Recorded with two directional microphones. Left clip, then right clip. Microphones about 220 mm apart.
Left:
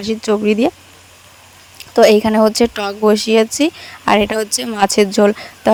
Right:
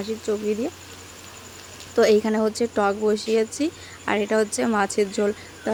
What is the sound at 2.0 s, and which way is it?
Speech, 40° left (ahead or behind).